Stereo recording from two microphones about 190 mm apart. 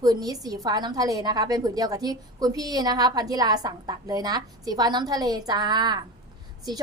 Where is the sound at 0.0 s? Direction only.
20° right (ahead or behind).